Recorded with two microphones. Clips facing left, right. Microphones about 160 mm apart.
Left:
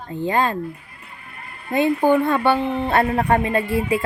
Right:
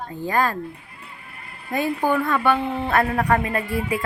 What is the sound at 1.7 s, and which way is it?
A woman's voice, 25° left (ahead or behind).